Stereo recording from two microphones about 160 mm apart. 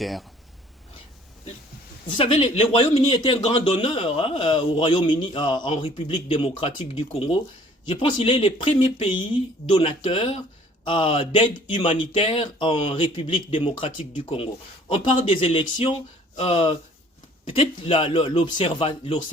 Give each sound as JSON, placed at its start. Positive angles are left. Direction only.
{"t": 0.0, "sound": "speech", "side_deg": 0}
{"t": 2.0, "sound": "speech", "side_deg": 30}